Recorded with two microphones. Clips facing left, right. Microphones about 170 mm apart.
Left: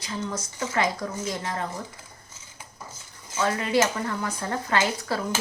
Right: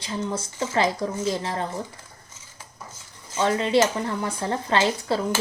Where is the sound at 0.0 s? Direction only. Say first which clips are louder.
Right 3 dB; 30° right (ahead or behind).